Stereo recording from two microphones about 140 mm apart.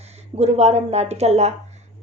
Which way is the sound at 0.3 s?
50° right (ahead or behind).